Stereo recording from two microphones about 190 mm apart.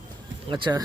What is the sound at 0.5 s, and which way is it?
Speech, 25° right (ahead or behind).